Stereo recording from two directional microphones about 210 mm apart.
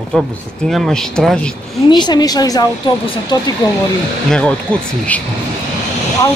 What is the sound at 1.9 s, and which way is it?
A woman's voice, 20° left (ahead or behind).